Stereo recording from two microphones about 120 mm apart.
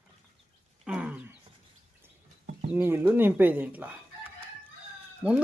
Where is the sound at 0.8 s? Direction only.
5° right (ahead or behind).